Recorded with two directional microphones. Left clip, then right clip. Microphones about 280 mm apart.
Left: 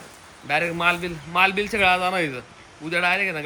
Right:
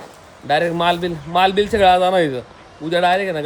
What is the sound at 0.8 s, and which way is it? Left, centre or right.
Speech, centre.